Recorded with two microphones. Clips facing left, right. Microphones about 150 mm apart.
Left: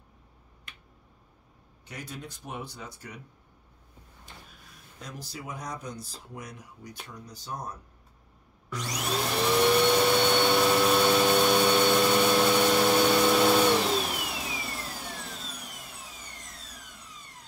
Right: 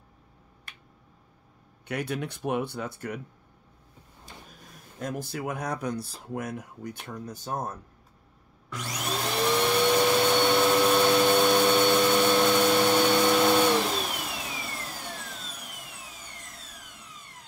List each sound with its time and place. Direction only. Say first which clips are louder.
1.9 s speech: right 10 dB; 65° right (ahead or behind)
5.0 s speech: right 9 dB; 55° right (ahead or behind)
8.6 s vacuum cleaner: left 1 dB; centre (ahead or behind)